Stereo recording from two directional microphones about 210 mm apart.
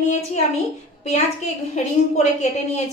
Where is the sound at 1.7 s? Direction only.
35° left (ahead or behind).